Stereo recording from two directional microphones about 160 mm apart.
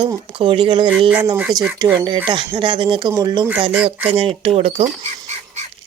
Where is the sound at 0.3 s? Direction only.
35° right (ahead or behind).